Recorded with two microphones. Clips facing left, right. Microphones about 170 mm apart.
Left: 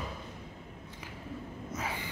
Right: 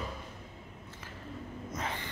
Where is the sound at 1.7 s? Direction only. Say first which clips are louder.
Even; 5° left (ahead or behind).